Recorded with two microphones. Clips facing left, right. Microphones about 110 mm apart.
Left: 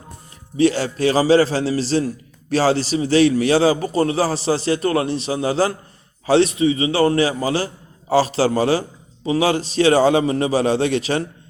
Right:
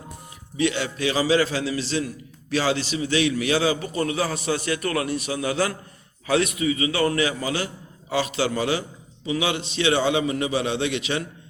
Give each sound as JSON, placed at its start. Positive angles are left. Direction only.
{"t": 0.5, "sound": "a man's voice", "side_deg": 35}